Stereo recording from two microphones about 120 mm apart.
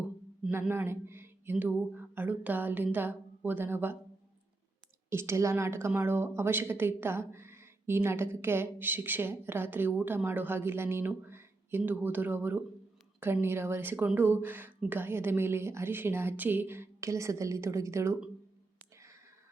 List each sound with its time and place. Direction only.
0.7 s speech: 20° right (ahead or behind)
5.0 s speech: 20° right (ahead or behind)